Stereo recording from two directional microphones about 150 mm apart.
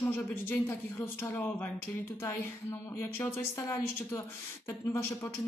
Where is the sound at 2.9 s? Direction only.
15° left (ahead or behind).